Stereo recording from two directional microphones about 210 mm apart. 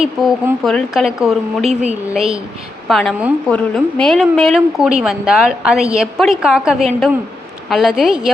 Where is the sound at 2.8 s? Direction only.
Centre (ahead or behind).